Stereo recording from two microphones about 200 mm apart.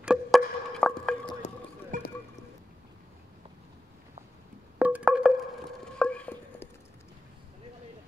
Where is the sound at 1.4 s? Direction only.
35° left (ahead or behind).